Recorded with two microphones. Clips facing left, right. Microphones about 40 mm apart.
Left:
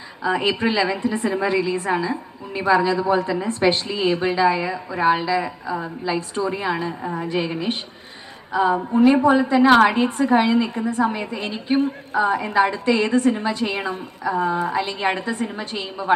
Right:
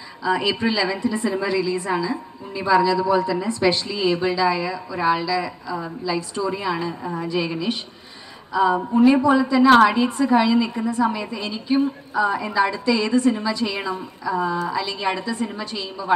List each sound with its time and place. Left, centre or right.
0.2 s a woman's voice: left
7.0 s a sound: left
7.3 s a woman's voice: left